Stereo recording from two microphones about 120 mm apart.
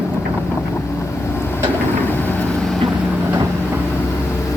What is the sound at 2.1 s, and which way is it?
Vehicle, 15° left (ahead or behind).